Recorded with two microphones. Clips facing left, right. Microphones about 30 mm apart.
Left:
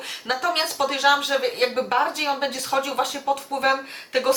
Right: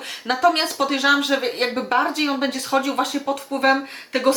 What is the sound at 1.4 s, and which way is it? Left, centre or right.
A woman's voice, centre.